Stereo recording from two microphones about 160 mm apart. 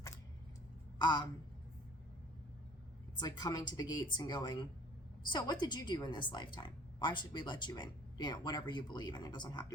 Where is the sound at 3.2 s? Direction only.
25° left (ahead or behind).